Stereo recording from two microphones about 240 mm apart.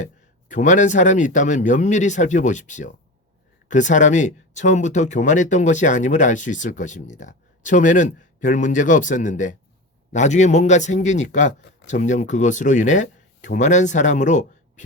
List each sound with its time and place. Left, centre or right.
0.0 s a man's voice: left